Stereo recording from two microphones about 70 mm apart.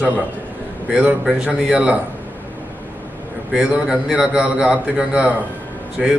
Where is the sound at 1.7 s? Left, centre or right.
Centre.